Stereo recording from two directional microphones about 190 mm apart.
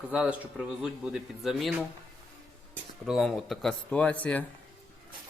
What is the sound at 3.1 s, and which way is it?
A man's voice, centre (ahead or behind).